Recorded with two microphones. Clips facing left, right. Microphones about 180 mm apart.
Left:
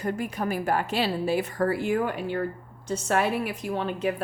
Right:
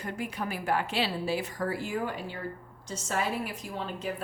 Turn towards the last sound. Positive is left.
turn(degrees=65)  # may be behind; listen again after turning